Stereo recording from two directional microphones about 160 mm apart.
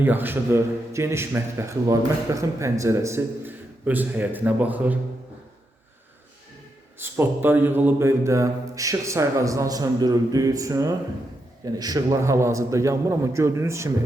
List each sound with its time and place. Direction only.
0.0 s a man's voice: 10° right (ahead or behind)
7.0 s speech: 15° right (ahead or behind)